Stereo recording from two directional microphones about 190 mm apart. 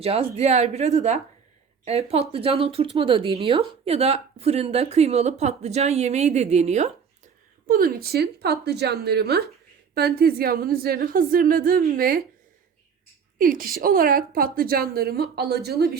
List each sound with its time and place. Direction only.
0.0 s a woman's voice: 30° right (ahead or behind)
7.7 s a woman's voice: 50° right (ahead or behind)
13.4 s a woman's voice: 50° right (ahead or behind)